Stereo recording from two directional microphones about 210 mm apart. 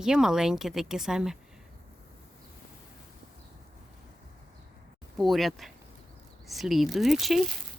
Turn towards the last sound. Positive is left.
turn(degrees=0)  # may be behind; listen again after turning